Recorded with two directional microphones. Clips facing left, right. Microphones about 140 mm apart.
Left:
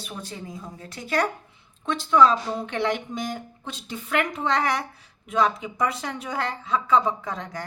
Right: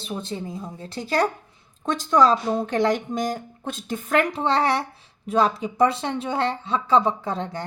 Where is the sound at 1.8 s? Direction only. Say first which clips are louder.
Right 1 dB; 40° right (ahead or behind).